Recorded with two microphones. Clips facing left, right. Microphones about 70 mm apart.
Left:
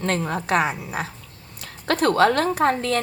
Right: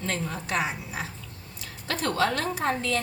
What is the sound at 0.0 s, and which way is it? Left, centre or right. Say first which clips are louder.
A woman's voice: left 7 dB; left.